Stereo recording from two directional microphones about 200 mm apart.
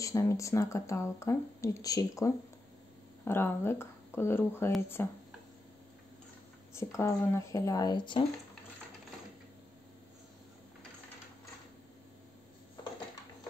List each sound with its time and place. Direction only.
0.0 s speech: 15° left (ahead or behind)
6.7 s speech: 15° left (ahead or behind)